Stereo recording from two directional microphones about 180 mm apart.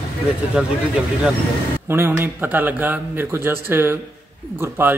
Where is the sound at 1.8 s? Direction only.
15° right (ahead or behind).